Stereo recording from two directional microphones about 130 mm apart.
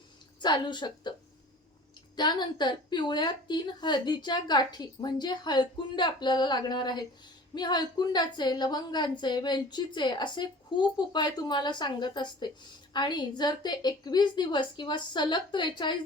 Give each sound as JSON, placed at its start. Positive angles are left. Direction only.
{"t": 0.4, "sound": "a woman's voice", "side_deg": 35}
{"t": 2.1, "sound": "a woman's voice", "side_deg": 35}